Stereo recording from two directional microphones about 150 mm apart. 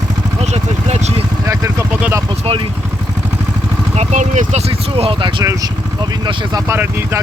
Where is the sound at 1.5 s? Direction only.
20° right (ahead or behind).